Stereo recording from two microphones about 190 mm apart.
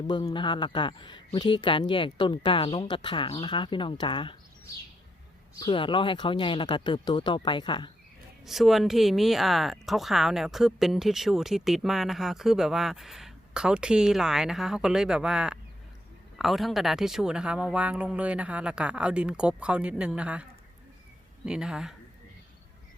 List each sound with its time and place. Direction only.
0.1 s a woman's voice: 25° left (ahead or behind)
5.5 s a woman's voice: 25° left (ahead or behind)
8.4 s speech: centre (ahead or behind)